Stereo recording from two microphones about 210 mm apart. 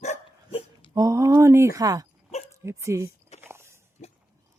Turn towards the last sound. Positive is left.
turn(degrees=-10)  # may be behind; listen again after turning